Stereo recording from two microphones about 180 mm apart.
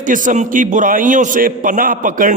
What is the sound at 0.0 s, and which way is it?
A man's voice, 45° right (ahead or behind).